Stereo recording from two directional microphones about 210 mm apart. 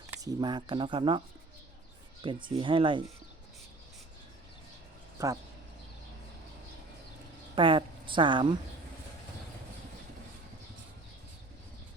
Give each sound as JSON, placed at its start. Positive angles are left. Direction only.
{"t": 0.1, "sound": "speech", "side_deg": -15}
{"t": 2.2, "sound": "speech", "side_deg": -25}
{"t": 5.2, "sound": "speech", "side_deg": -15}
{"t": 7.5, "sound": "a woman's voice", "side_deg": -25}